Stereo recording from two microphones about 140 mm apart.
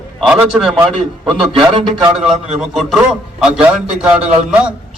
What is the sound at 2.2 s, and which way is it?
A man's voice, 5° right (ahead or behind).